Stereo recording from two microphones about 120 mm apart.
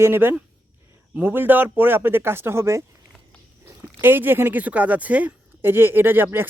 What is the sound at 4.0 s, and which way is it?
Speech, 20° right (ahead or behind).